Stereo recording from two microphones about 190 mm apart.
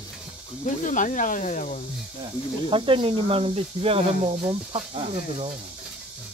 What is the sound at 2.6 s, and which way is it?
Speech, 25° right (ahead or behind).